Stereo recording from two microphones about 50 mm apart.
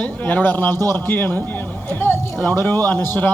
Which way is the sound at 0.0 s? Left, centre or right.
Left.